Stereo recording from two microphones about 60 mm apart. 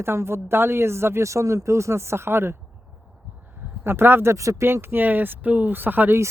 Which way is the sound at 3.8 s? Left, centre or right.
Right.